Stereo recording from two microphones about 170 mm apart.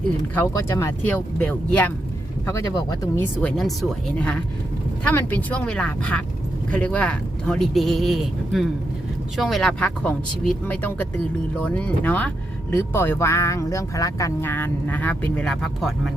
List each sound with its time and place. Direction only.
0.3 s speech: 15° left (ahead or behind)
3.2 s speech: 5° left (ahead or behind)